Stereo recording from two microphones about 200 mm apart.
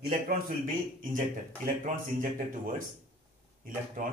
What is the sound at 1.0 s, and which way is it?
A man's voice, 45° right (ahead or behind).